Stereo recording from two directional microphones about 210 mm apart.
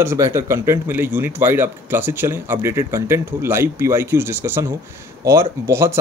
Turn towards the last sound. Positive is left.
turn(degrees=-10)  # may be behind; listen again after turning